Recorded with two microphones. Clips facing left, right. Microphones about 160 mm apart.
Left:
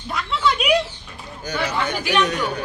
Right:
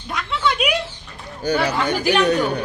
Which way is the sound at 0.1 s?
Centre (ahead or behind).